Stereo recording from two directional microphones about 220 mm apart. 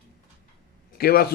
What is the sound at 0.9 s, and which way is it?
Speech, 45° left (ahead or behind).